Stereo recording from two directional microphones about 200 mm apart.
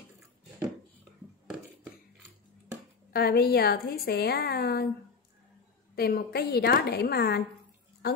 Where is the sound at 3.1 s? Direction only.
50° left (ahead or behind).